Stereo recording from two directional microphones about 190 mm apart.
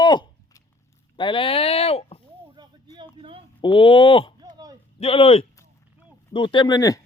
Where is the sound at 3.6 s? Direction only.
25° left (ahead or behind).